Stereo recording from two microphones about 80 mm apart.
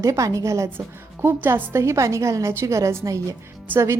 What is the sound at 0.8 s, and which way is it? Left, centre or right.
A woman's voice, right.